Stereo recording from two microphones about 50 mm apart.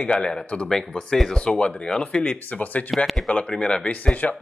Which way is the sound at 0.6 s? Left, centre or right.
Centre.